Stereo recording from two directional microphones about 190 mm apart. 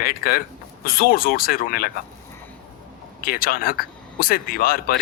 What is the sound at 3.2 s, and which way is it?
A man's voice, 50° left (ahead or behind).